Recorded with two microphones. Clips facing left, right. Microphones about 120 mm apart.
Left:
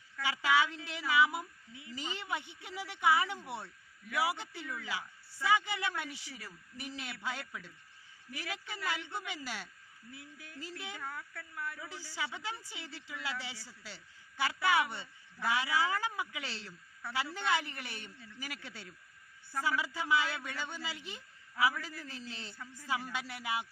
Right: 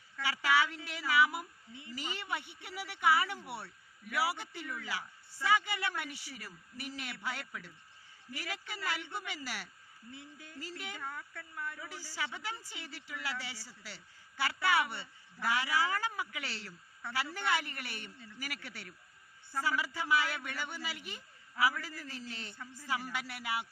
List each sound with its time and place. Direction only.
0.2 s a man's voice: 15° left (ahead or behind)
10.1 s speech: 5° left (ahead or behind)
10.6 s a man's voice: 15° left (ahead or behind)
11.0 s speech: centre (ahead or behind)
11.9 s a man's voice: 15° left (ahead or behind)